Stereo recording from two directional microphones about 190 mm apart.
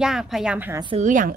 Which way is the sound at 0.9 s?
40° right (ahead or behind).